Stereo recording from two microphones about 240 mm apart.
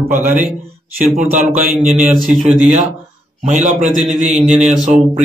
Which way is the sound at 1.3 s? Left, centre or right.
Right.